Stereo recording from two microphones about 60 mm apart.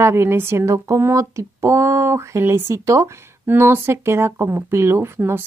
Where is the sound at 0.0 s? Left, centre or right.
Right.